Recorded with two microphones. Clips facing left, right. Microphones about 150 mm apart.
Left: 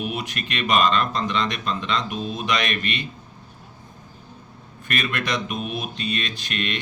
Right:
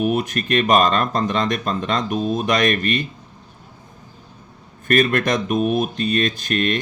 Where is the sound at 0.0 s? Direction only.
45° right (ahead or behind).